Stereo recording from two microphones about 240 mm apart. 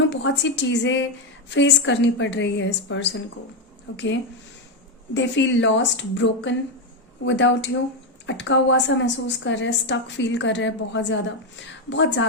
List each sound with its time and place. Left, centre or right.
0.0 s a woman's voice: left